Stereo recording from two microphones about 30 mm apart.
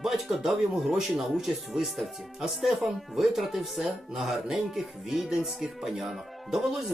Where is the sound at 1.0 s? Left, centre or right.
Centre.